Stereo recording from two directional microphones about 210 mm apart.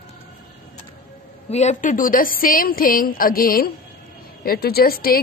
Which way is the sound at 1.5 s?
35° left (ahead or behind).